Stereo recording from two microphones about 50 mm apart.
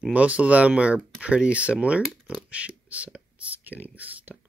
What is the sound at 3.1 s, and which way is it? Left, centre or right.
Whispering, right.